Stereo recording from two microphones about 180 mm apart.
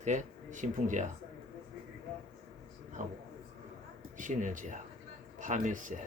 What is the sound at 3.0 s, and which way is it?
Speech, 40° right (ahead or behind).